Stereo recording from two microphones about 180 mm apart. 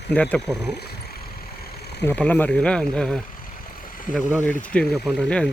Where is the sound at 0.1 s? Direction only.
5° left (ahead or behind).